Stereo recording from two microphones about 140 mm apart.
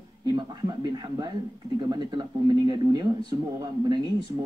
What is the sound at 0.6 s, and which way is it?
Speech, 30° right (ahead or behind).